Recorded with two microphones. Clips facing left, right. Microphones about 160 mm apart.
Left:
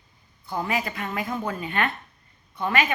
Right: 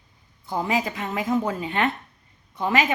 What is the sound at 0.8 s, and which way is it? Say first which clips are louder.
A woman's voice: right 4 dB; 20° right (ahead or behind).